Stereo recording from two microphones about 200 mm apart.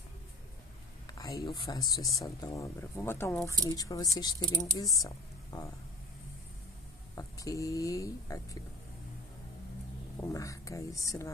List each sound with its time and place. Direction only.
1.0 s a sound: 15° left (ahead or behind)
2.1 s speech: 15° left (ahead or behind)
7.2 s speech: 15° left (ahead or behind)
10.2 s speech: 15° left (ahead or behind)